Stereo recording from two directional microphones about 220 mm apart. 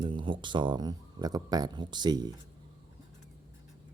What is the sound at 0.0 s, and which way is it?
Speech, 20° right (ahead or behind).